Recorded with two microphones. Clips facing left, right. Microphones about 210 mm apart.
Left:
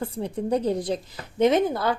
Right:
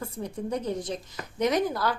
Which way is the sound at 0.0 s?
30° left (ahead or behind).